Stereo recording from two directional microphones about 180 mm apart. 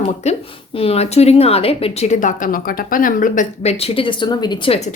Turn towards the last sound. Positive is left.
turn(degrees=25)  # may be behind; listen again after turning